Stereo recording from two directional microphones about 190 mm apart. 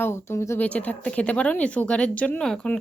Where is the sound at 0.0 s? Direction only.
15° left (ahead or behind).